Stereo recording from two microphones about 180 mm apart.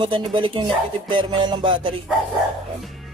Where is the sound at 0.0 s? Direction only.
30° right (ahead or behind).